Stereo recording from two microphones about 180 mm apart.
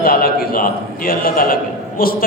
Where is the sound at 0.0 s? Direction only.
55° left (ahead or behind).